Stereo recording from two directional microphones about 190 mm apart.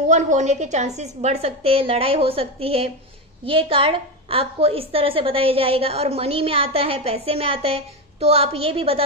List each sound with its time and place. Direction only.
0.1 s a woman's voice: 40° right (ahead or behind)